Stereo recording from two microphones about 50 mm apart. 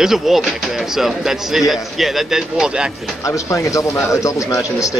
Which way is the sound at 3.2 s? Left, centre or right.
Left.